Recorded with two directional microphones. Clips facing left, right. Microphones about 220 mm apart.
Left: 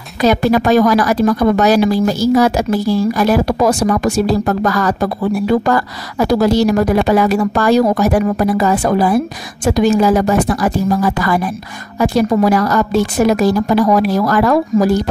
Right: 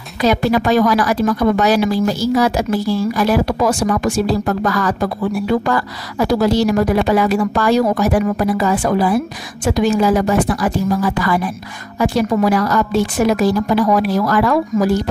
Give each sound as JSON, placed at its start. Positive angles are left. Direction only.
{"t": 0.2, "sound": "a woman's voice", "side_deg": 45}